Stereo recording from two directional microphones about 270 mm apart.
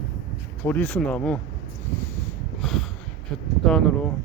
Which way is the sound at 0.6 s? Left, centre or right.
Centre.